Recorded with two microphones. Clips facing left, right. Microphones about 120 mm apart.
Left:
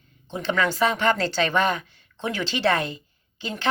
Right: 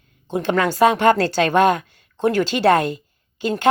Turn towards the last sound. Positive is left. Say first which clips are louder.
# right 10 dB
turn(degrees=-50)  # may be behind; listen again after turning